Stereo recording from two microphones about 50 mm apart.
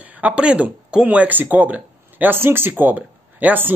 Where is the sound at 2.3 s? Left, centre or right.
Right.